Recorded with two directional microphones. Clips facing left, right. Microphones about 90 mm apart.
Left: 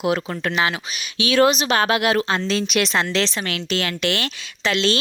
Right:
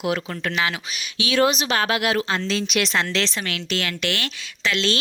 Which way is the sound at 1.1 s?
55° left (ahead or behind).